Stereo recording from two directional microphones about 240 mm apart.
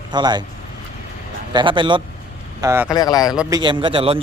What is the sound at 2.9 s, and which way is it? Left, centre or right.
Speech, centre.